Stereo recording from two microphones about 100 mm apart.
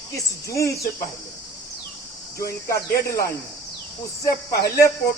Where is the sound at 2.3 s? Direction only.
30° left (ahead or behind).